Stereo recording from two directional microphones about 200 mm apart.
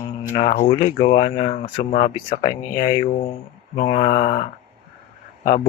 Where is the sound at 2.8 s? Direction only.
20° left (ahead or behind).